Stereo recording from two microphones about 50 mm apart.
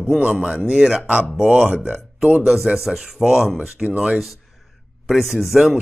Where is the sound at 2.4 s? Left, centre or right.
Centre.